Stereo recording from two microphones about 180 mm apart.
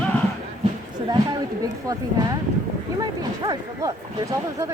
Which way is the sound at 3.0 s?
20° right (ahead or behind).